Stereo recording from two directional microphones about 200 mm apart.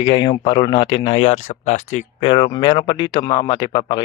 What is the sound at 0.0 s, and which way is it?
Speech, 20° left (ahead or behind).